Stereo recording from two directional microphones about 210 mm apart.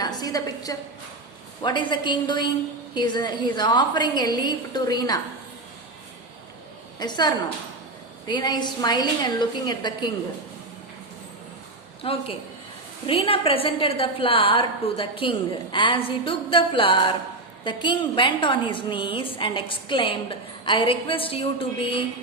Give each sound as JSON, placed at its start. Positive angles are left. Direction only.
{"t": 0.0, "sound": "a sound", "side_deg": 20}
{"t": 1.6, "sound": "a woman's voice", "side_deg": 20}
{"t": 7.0, "sound": "a woman's voice", "side_deg": 20}
{"t": 12.0, "sound": "a woman's voice", "side_deg": 25}